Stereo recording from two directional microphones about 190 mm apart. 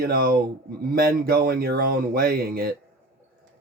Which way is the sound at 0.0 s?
50° right (ahead or behind).